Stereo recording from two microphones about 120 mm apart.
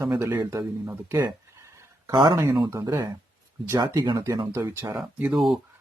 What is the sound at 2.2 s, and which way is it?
Speech, 30° right (ahead or behind).